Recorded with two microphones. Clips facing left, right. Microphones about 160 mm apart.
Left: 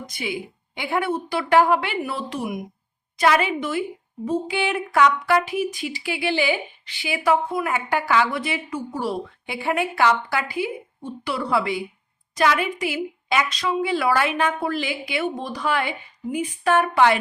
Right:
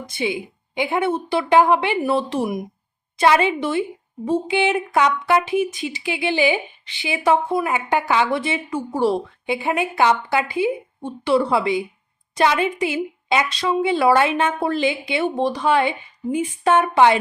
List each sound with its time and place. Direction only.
0.1 s speech: 25° right (ahead or behind)